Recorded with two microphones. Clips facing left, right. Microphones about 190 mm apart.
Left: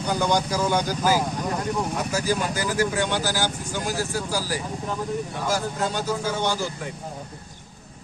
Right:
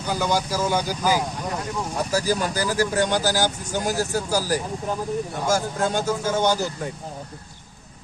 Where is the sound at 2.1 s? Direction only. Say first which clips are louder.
Right 3 dB; 35° right (ahead or behind).